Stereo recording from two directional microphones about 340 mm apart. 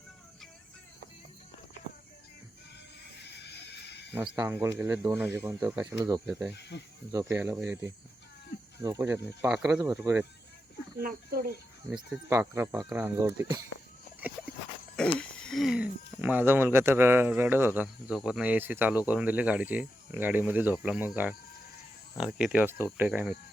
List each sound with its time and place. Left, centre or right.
3.2 s a sound: left
4.1 s speech: centre
6.6 s speech: left
7.1 s speech: centre
11.0 s speech: right
11.9 s speech: centre
14.9 s speech: centre